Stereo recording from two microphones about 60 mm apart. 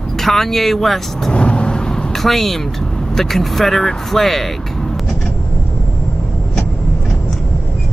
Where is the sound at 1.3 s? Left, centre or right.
Centre.